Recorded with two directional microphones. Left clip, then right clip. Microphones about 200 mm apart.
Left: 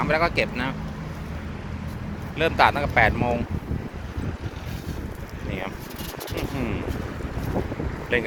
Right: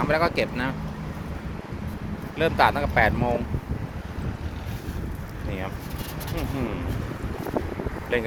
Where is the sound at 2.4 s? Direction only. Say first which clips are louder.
Left 1 dB; 10° right (ahead or behind).